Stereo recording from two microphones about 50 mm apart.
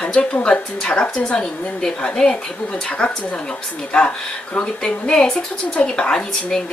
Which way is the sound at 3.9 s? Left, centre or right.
Centre.